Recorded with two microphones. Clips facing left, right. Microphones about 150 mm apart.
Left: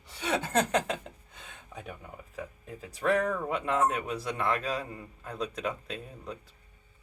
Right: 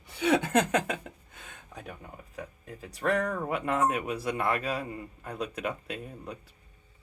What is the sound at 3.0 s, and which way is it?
Speech, 5° right (ahead or behind).